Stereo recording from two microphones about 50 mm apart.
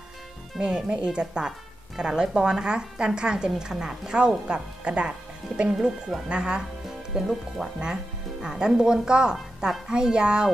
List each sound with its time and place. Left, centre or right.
0.6 s speech: centre
7.2 s speech: centre
7.8 s speech: centre